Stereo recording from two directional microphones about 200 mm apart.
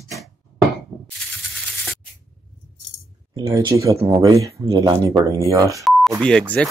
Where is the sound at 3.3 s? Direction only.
20° right (ahead or behind).